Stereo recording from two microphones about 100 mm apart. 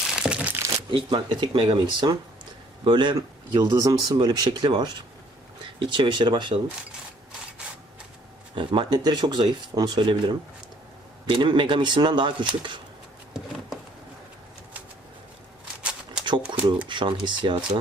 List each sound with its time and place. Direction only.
0.2 s speech: 10° right (ahead or behind)
0.9 s speech: 60° right (ahead or behind)
3.2 s speech: 35° right (ahead or behind); by 6.5 s 55° right (ahead or behind)
8.5 s speech: 55° right (ahead or behind)
15.8 s shuffling cards: 10° right (ahead or behind)
16.2 s shuffling cards: 50° right (ahead or behind)
16.9 s speech: 50° right (ahead or behind)